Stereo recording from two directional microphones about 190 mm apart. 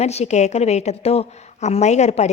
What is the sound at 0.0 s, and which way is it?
A woman's voice, 35° left (ahead or behind).